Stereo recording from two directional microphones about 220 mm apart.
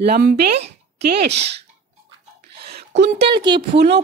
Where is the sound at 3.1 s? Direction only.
20° right (ahead or behind).